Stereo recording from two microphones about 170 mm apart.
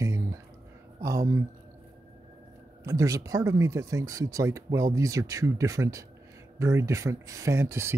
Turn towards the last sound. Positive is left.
turn(degrees=-15)  # may be behind; listen again after turning